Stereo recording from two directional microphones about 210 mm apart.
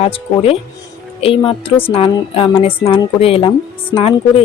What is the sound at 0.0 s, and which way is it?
A woman's voice, 25° left (ahead or behind).